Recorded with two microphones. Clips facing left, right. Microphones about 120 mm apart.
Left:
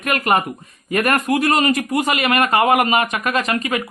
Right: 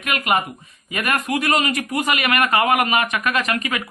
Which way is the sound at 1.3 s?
35° left (ahead or behind).